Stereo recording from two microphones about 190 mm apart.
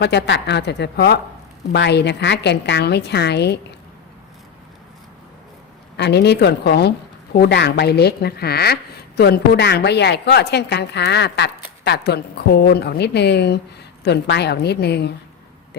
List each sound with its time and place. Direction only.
0.0 s a woman's voice: 60° left (ahead or behind)
6.0 s a woman's voice: 60° left (ahead or behind)